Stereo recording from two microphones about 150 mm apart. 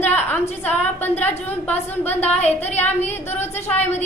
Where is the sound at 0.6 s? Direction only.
10° left (ahead or behind).